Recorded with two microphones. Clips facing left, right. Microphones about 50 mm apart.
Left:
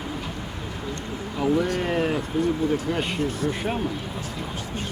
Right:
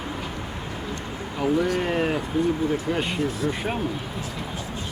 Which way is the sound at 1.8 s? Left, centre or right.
Centre.